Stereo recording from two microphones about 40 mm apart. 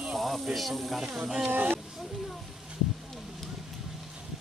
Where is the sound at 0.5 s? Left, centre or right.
Centre.